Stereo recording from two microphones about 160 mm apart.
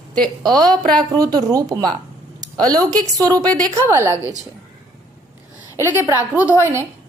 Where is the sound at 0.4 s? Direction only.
25° right (ahead or behind).